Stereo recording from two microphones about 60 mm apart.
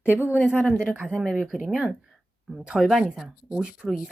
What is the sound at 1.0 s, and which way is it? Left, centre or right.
Speech, centre.